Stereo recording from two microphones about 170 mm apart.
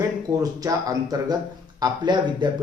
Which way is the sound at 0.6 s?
20° right (ahead or behind).